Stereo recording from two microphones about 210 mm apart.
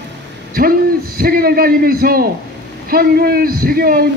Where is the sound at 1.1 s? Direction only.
45° right (ahead or behind).